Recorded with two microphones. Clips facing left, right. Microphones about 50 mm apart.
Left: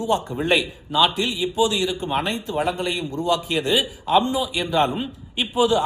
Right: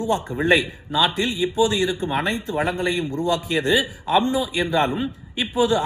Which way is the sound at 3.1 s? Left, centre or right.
Left.